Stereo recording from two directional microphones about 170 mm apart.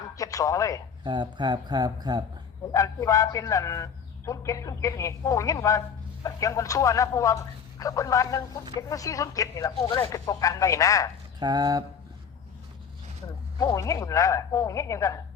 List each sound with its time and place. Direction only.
0.2 s speech: 20° left (ahead or behind)
1.0 s speech: 25° right (ahead or behind)
2.7 s speech: 20° left (ahead or behind)
11.3 s a sound: 25° right (ahead or behind)
13.6 s speech: 20° left (ahead or behind)